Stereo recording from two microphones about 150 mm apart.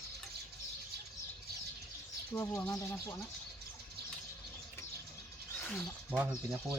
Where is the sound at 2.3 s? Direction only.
20° left (ahead or behind).